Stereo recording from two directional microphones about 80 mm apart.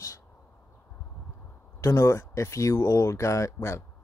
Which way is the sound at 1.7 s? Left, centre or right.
Left.